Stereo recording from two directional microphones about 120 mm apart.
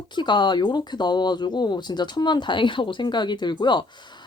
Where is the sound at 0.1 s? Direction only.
40° left (ahead or behind).